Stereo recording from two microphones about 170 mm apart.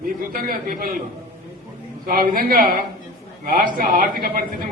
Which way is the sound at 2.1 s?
60° right (ahead or behind).